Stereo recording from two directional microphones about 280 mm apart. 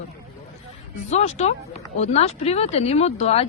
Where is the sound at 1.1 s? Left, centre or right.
Left.